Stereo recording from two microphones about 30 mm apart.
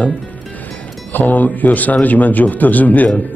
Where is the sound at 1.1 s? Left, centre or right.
Left.